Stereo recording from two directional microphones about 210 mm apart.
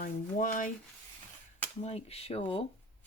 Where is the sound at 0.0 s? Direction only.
40° left (ahead or behind).